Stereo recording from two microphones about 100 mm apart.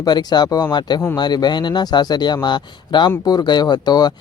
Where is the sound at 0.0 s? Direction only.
45° left (ahead or behind).